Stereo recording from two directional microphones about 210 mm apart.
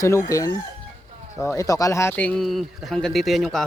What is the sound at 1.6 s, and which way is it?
Speech, 15° left (ahead or behind).